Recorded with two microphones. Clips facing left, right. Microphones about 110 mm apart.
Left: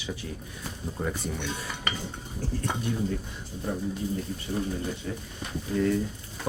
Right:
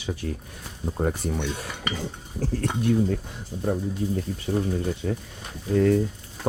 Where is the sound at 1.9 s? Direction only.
90° right.